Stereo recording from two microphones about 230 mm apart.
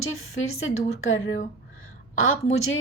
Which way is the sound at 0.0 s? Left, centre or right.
Left.